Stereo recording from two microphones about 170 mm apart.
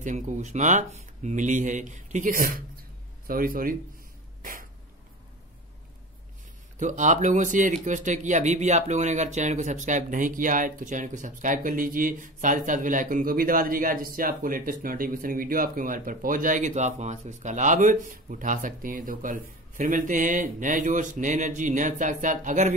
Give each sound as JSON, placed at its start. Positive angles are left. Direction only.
{"t": 0.0, "sound": "speech", "side_deg": -45}
{"t": 4.4, "sound": "cough", "side_deg": -55}
{"t": 6.8, "sound": "speech", "side_deg": -45}